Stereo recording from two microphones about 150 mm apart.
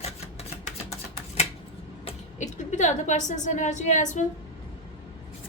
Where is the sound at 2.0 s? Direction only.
50° left (ahead or behind).